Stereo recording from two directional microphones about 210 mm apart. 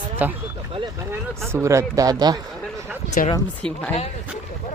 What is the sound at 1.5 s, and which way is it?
Speech, 15° right (ahead or behind).